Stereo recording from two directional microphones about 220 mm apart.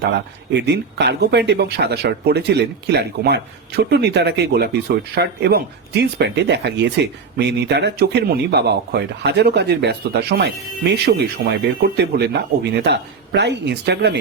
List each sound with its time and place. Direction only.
0.5 s speech: 50° right (ahead or behind)